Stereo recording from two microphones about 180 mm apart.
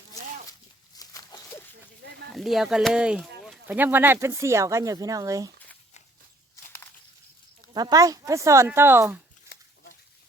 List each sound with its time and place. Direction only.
0.9 s a sound: 20° left (ahead or behind)
2.3 s speech: centre (ahead or behind); by 5.5 s 20° right (ahead or behind)
7.7 s speech: 20° right (ahead or behind)